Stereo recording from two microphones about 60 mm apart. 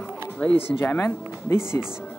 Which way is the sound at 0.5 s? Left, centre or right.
Left.